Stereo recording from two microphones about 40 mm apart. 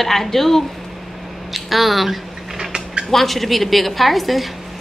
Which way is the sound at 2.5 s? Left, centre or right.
Centre.